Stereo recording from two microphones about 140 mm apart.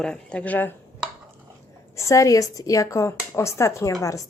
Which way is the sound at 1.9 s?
20° left (ahead or behind).